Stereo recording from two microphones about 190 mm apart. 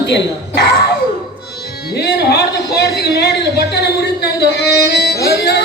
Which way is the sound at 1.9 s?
60° left (ahead or behind).